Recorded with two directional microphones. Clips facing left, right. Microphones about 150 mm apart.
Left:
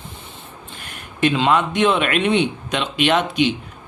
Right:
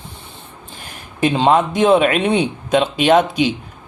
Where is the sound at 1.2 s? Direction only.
35° right (ahead or behind).